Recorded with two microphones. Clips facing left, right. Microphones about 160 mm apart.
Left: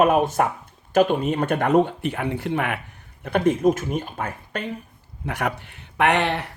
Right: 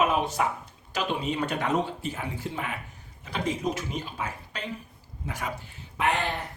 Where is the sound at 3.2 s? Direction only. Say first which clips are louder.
Left 10 dB; 55° left (ahead or behind).